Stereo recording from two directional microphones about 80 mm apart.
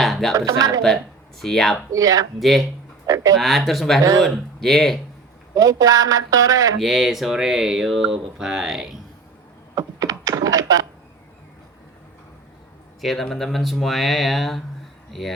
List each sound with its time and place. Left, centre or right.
0.0 s music: centre
0.3 s speech: right
1.4 s speech: centre
1.9 s speech: right
2.4 s speech: centre
5.5 s speech: right
6.7 s speech: centre
9.7 s thunk: right
13.0 s speech: centre